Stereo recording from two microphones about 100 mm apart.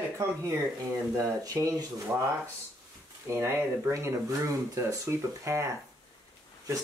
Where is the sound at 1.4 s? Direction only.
35° right (ahead or behind).